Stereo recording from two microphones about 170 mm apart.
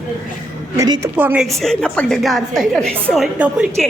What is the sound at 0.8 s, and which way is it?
Speech, 20° right (ahead or behind).